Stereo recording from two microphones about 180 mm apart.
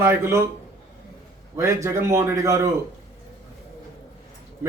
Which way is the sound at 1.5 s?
15° right (ahead or behind).